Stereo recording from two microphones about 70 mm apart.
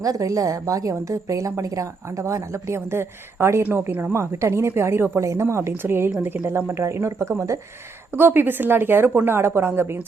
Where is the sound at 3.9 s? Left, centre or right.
Right.